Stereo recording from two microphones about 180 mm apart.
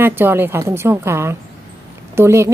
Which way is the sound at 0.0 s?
10° right (ahead or behind).